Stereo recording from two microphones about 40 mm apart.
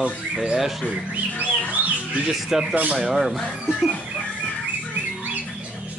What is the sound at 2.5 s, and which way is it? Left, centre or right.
Speech, centre.